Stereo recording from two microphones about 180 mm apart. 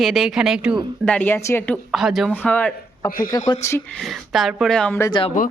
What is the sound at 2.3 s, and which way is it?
Speech, 10° left (ahead or behind).